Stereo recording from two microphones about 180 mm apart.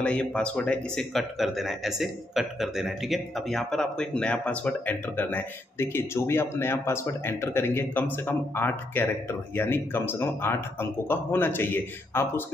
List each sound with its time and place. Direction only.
0.0 s a man's voice: 5° left (ahead or behind)